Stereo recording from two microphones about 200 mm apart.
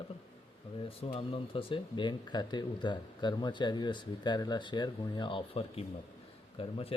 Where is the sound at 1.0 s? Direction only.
30° left (ahead or behind).